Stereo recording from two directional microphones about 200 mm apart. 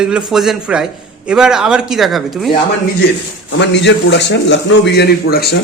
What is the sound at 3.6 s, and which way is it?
A man's voice, 60° left (ahead or behind).